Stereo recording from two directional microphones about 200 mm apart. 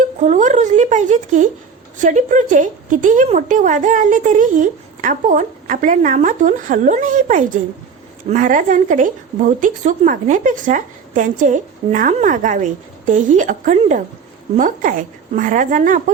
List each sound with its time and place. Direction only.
0.0 s a woman's voice: 40° right (ahead or behind)